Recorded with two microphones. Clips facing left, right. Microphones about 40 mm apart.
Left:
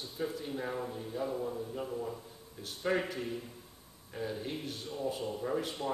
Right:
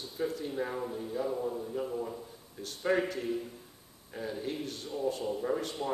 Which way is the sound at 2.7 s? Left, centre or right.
Centre.